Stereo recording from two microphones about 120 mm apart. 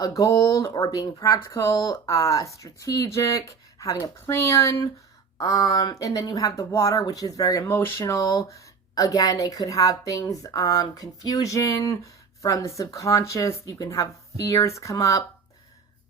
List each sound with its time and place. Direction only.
0.0 s speech: 30° left (ahead or behind)